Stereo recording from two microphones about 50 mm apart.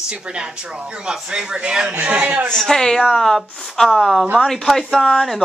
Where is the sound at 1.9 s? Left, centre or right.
Right.